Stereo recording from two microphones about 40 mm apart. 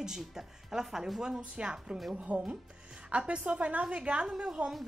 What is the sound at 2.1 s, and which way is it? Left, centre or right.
A woman's voice, right.